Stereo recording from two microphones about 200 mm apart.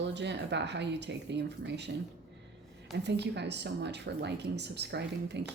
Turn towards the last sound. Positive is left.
turn(degrees=-60)  # may be behind; listen again after turning